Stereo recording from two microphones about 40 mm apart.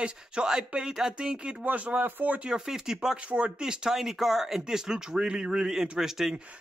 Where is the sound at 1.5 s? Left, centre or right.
Right.